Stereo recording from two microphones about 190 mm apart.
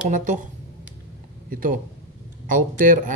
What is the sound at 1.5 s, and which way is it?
Speech, 45° right (ahead or behind).